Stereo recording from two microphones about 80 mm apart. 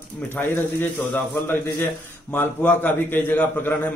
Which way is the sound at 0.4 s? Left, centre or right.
Left.